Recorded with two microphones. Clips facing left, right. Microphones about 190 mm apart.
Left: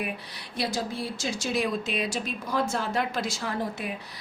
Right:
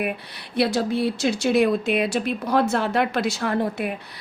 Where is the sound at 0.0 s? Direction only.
65° right (ahead or behind).